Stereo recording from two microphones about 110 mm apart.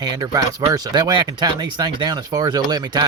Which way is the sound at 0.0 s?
35° right (ahead or behind).